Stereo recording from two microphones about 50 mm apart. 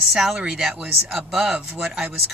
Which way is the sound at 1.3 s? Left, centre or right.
Centre.